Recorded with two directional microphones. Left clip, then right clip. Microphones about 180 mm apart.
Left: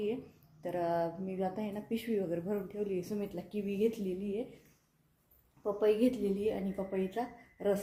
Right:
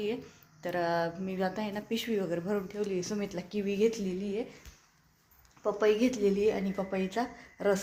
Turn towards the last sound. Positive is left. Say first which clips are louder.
# right 4 dB
turn(degrees=-15)  # may be behind; listen again after turning